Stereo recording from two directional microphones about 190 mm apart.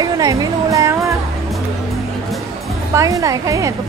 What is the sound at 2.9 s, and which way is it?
Speech, 15° right (ahead or behind).